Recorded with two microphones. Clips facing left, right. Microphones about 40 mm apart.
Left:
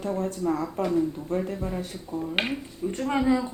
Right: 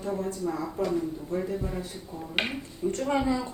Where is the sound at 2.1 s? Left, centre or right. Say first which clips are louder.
Left 7 dB; left.